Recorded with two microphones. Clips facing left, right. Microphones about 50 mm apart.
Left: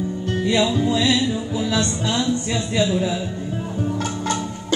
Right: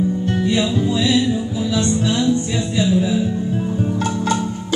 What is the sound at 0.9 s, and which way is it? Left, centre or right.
Music, left.